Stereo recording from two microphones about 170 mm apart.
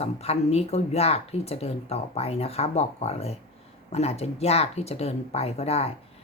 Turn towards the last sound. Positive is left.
turn(degrees=35)  # may be behind; listen again after turning